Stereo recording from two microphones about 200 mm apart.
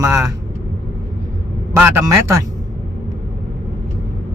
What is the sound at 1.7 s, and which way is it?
Speech, 15° right (ahead or behind).